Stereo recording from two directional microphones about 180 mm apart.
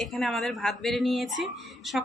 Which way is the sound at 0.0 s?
Centre (ahead or behind).